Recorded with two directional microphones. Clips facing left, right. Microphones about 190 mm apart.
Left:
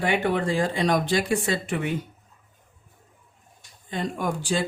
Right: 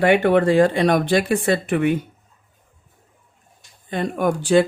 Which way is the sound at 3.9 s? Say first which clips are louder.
Right 7 dB; 60° right (ahead or behind).